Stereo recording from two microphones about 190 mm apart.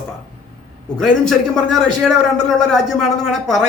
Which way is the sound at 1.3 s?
Centre (ahead or behind).